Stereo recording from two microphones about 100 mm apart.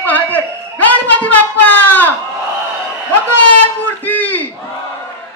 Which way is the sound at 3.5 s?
20° left (ahead or behind).